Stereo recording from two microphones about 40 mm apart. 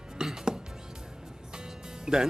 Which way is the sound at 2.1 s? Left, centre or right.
Centre.